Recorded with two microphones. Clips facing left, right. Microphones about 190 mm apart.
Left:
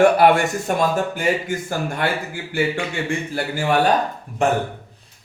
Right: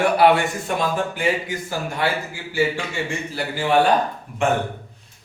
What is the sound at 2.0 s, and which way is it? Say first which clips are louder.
A man's voice: even; 55° left (ahead or behind).